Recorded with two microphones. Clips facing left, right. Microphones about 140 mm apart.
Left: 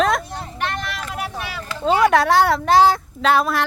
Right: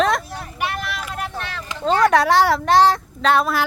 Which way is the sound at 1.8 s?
10° left (ahead or behind).